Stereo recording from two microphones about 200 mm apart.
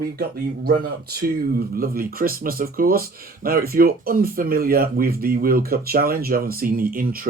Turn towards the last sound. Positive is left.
turn(degrees=-45)  # may be behind; listen again after turning